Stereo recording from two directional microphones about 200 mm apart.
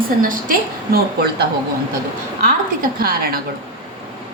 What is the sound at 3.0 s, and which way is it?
Speech, 50° right (ahead or behind).